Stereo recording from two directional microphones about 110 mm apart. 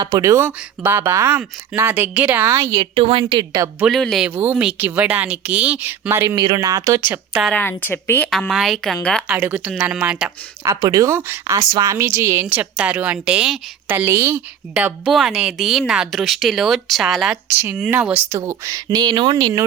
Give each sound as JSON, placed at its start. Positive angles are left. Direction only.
{"t": 0.0, "sound": "speech", "side_deg": -40}
{"t": 0.3, "sound": "a woman's voice", "side_deg": -20}
{"t": 2.7, "sound": "a woman's voice", "side_deg": -60}
{"t": 3.9, "sound": "speech", "side_deg": 0}
{"t": 4.4, "sound": "a woman's voice", "side_deg": -15}
{"t": 6.3, "sound": "speech", "side_deg": -40}
{"t": 7.5, "sound": "speech", "side_deg": 15}
{"t": 8.3, "sound": "speech", "side_deg": 5}
{"t": 9.3, "sound": "a woman's voice", "side_deg": -15}
{"t": 10.6, "sound": "a woman's voice", "side_deg": -30}
{"t": 13.9, "sound": "a woman's voice", "side_deg": -20}
{"t": 14.7, "sound": "a woman's voice", "side_deg": -10}
{"t": 18.3, "sound": "a woman's voice", "side_deg": -25}
{"t": 19.1, "sound": "speech", "side_deg": -45}